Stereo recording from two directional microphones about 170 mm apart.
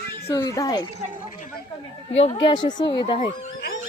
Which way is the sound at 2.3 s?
25° left (ahead or behind).